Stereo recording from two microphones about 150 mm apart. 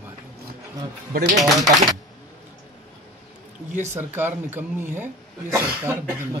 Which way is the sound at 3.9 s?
15° right (ahead or behind).